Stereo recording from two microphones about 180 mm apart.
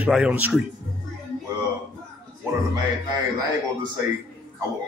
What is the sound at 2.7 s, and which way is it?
Speech, 20° right (ahead or behind).